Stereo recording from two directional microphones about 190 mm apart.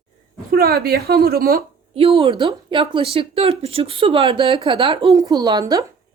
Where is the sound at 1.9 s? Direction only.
30° right (ahead or behind).